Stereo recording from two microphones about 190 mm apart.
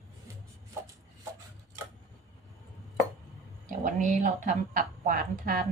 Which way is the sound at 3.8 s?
45° right (ahead or behind).